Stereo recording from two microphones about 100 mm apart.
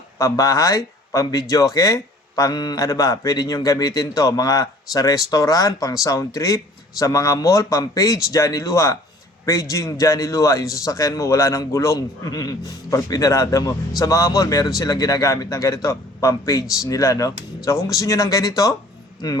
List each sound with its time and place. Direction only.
0.2 s speech: 35° left (ahead or behind)